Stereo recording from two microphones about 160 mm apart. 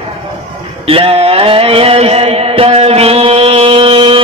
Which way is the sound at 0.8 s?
35° right (ahead or behind).